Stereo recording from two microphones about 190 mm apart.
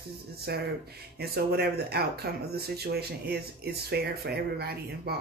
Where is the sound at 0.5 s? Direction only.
55° right (ahead or behind).